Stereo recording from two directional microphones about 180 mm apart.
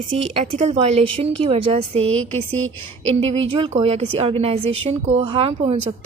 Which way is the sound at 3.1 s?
35° right (ahead or behind).